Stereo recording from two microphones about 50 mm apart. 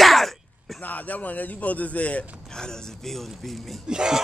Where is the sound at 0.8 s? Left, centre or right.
Left.